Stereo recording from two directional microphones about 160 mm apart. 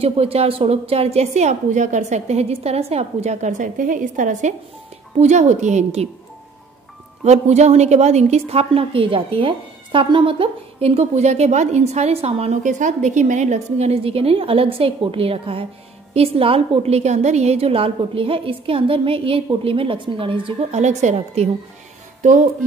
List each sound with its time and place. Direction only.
0.0 s a woman's voice: 40° right (ahead or behind)
7.2 s a woman's voice: 45° right (ahead or behind)
20.8 s a woman's voice: 45° right (ahead or behind)